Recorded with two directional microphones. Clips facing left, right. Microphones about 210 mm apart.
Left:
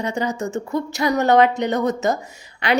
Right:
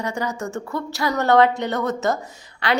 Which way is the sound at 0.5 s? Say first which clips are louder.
Left 4 dB; 20° left (ahead or behind).